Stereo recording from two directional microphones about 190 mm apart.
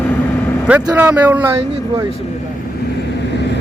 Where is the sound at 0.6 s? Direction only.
5° right (ahead or behind).